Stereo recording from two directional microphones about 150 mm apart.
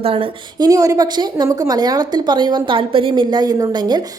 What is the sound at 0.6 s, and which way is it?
A woman's voice, 25° right (ahead or behind).